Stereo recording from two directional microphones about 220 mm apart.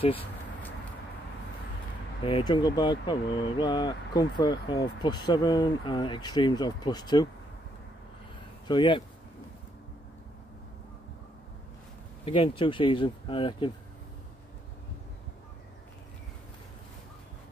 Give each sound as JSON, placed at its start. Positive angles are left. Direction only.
{"t": 0.0, "sound": "speech", "side_deg": 25}
{"t": 2.2, "sound": "speech", "side_deg": 20}
{"t": 8.6, "sound": "speech", "side_deg": 20}
{"t": 12.3, "sound": "speech", "side_deg": 25}